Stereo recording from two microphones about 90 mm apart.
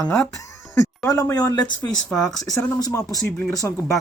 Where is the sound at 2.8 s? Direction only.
40° left (ahead or behind).